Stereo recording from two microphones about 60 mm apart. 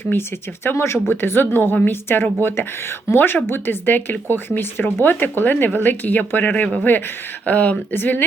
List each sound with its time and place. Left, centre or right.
0.1 s speech: left